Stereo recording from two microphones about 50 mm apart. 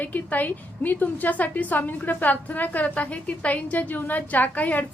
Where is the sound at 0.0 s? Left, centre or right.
Left.